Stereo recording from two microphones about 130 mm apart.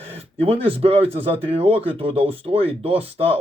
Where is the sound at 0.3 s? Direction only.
45° right (ahead or behind).